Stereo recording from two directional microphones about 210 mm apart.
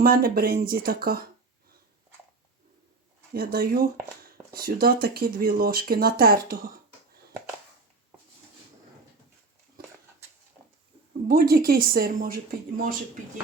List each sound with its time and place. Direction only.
0.0 s speech: 45° right (ahead or behind)
3.3 s speech: 45° right (ahead or behind)
9.8 s a sound: 45° right (ahead or behind)
11.3 s speech: 45° right (ahead or behind)